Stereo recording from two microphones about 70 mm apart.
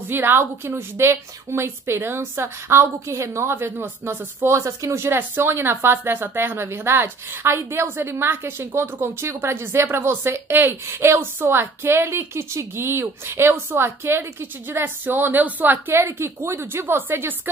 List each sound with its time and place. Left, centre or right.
0.1 s a woman's voice: right
4.9 s a woman's voice: right
15.9 s a woman's voice: right